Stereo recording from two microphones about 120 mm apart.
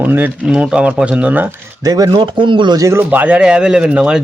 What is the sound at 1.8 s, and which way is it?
Speech, 30° right (ahead or behind).